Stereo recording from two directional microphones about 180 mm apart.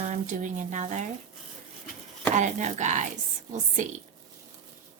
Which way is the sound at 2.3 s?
40° right (ahead or behind).